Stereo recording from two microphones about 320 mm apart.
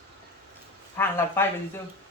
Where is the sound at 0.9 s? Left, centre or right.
Centre.